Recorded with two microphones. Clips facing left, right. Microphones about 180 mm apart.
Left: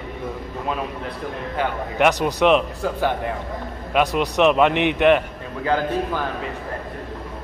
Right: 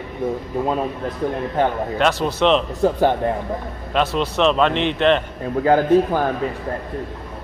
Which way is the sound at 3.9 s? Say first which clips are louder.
Left 1 dB; 15° left (ahead or behind).